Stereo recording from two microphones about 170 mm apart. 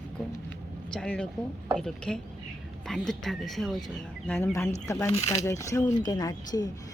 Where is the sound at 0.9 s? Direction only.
5° left (ahead or behind).